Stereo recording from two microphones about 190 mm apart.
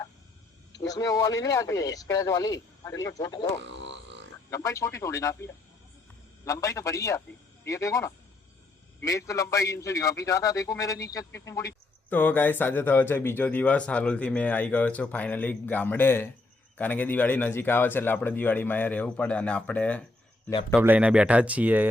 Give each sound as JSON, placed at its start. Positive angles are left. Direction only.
{"t": 0.9, "sound": "speech", "side_deg": 20}
{"t": 3.6, "sound": "didgeridoo", "side_deg": -70}
{"t": 4.5, "sound": "speech", "side_deg": 15}
{"t": 20.7, "sound": "speech", "side_deg": -5}